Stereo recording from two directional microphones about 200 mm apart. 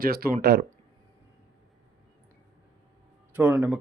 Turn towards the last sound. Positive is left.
turn(degrees=-5)  # may be behind; listen again after turning